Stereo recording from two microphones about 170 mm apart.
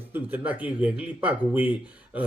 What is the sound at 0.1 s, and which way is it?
Speech, 10° right (ahead or behind).